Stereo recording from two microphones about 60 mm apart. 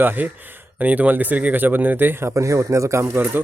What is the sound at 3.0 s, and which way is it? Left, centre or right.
Speech, right.